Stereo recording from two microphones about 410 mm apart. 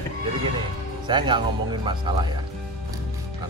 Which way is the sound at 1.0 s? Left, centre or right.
Centre.